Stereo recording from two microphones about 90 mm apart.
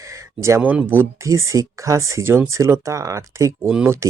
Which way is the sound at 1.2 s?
35° right (ahead or behind).